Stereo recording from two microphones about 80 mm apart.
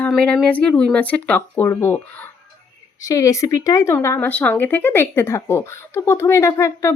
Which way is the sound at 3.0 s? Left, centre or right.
Left.